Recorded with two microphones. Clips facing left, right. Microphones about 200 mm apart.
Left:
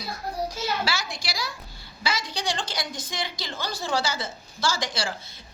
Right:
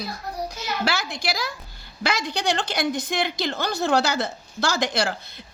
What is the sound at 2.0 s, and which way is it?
A woman's voice, 65° right (ahead or behind).